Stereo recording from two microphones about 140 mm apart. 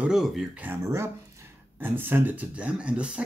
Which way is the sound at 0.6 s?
15° right (ahead or behind).